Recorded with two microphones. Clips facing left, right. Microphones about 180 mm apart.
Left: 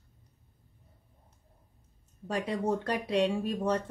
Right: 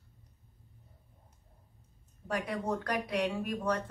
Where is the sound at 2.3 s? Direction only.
25° left (ahead or behind).